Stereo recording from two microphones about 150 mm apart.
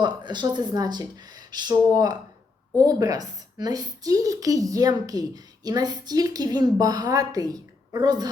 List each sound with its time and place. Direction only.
0.0 s a woman's voice: 30° right (ahead or behind)